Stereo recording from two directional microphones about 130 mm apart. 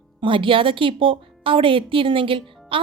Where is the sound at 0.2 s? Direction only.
40° right (ahead or behind).